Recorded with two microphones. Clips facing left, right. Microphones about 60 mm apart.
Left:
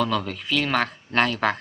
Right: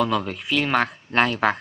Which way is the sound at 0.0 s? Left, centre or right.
Centre.